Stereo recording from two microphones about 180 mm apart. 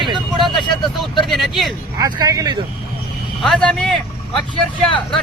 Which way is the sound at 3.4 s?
5° left (ahead or behind).